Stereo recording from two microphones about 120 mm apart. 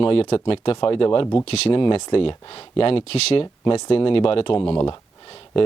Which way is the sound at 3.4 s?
40° left (ahead or behind).